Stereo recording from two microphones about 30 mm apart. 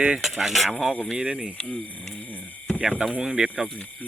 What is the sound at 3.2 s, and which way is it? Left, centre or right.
Speech, right.